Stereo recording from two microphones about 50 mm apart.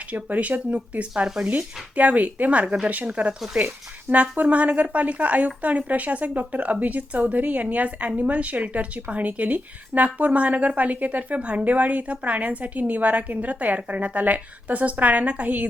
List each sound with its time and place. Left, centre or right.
0.1 s a woman's voice: right
1.5 s a woman's voice: right; by 3.7 s centre
4.1 s a woman's voice: right